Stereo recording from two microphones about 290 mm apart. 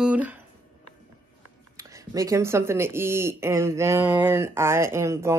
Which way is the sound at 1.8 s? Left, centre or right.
Centre.